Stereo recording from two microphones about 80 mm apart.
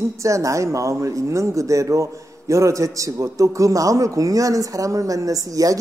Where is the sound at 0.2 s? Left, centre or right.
Right.